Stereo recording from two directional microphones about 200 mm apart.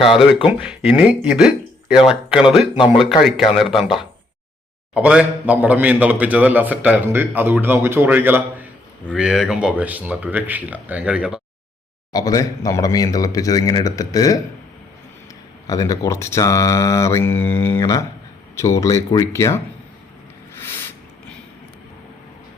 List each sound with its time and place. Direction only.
0.1 s speech: centre (ahead or behind)
4.9 s a man's voice: 5° right (ahead or behind)
12.1 s speech: 20° left (ahead or behind)
15.6 s speech: 15° left (ahead or behind)
20.6 s a sound: 10° left (ahead or behind)